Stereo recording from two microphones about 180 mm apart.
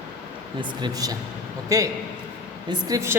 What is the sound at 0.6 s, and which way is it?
Speech, 25° right (ahead or behind).